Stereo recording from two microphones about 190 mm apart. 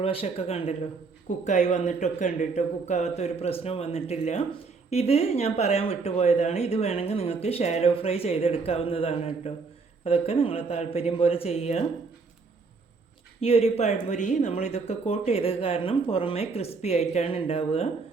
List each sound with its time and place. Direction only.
0.0 s speech: 30° left (ahead or behind)
13.4 s speech: 30° left (ahead or behind)